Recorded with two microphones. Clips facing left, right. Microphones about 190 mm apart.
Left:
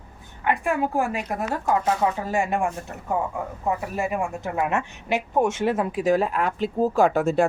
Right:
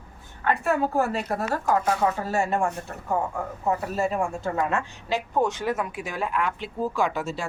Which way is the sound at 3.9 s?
15° left (ahead or behind).